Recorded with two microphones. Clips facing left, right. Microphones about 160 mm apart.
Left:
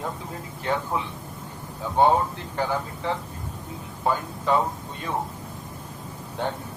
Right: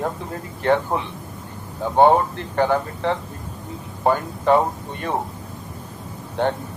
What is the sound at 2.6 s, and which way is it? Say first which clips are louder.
A man's voice: right 7 dB; 65° right (ahead or behind).